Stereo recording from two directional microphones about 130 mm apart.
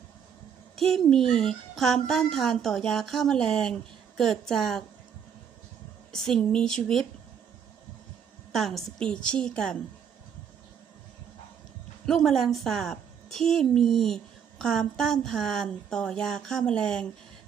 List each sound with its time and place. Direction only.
0.8 s a child's voice: 5° left (ahead or behind)
6.1 s a child's voice: 5° left (ahead or behind)
8.5 s a woman's voice: centre (ahead or behind)
12.0 s a child's voice: centre (ahead or behind)